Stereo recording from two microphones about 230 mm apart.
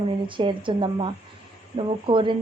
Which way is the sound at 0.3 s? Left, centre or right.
Right.